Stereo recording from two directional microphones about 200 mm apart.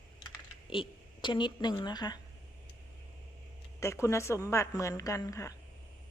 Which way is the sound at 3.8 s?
15° left (ahead or behind).